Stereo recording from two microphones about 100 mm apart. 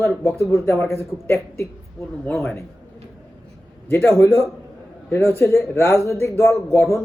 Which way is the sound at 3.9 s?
20° left (ahead or behind).